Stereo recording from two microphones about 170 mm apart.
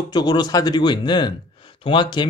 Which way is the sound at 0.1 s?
25° left (ahead or behind).